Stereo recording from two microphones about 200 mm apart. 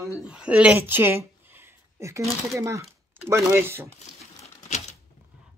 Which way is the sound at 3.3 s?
15° right (ahead or behind).